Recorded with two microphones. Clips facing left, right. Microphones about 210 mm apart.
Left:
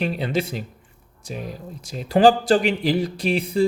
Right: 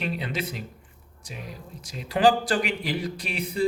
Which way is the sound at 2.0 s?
40° left (ahead or behind).